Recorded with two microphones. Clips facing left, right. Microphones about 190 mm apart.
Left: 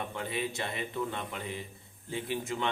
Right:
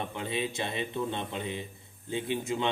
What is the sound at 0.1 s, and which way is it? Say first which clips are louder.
A man's voice: right 2 dB; 20° right (ahead or behind).